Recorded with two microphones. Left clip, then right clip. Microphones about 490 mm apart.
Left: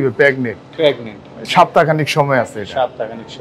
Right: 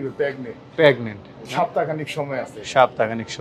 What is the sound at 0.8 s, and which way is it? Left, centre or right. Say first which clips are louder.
Speech: left 1 dB; right.